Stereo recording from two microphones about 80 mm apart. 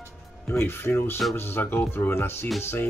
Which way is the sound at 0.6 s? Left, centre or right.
Left.